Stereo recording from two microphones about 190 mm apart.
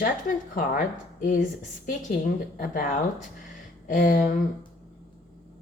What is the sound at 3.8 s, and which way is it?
Speech, 45° left (ahead or behind).